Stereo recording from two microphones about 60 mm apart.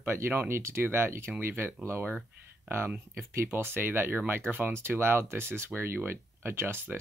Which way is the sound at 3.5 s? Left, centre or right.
Right.